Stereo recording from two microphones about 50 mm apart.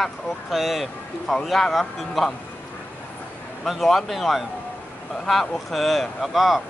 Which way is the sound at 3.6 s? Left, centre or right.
Centre.